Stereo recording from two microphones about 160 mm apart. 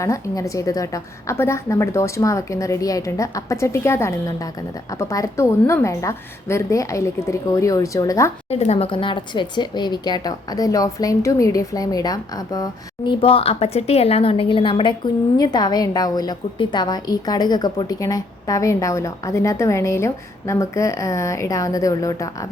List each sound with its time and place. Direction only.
0.0 s a woman's voice: 20° left (ahead or behind)
8.4 s a woman's voice: 40° left (ahead or behind); by 13.1 s 25° left (ahead or behind)
13.2 s a woman's voice: 35° left (ahead or behind); by 22.4 s 20° left (ahead or behind)